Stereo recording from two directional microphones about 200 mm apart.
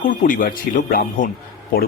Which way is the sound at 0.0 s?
40° left (ahead or behind).